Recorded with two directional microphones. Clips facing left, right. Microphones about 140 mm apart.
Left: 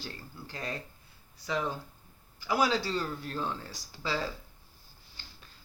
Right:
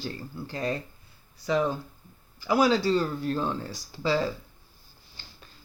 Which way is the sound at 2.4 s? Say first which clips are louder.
Right 6 dB; 35° right (ahead or behind).